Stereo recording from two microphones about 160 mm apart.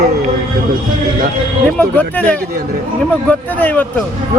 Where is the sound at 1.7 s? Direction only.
10° left (ahead or behind).